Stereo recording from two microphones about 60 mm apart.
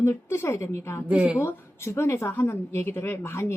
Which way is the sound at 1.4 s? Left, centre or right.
Left.